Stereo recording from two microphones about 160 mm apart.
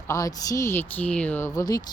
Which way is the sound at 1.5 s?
25° left (ahead or behind).